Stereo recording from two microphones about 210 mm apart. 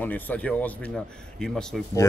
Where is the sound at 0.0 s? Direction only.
10° left (ahead or behind).